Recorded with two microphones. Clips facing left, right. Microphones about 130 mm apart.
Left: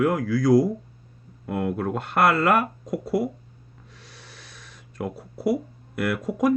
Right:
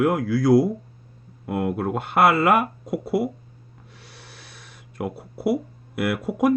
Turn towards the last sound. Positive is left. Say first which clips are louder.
# right 1 dB
turn(degrees=-10)  # may be behind; listen again after turning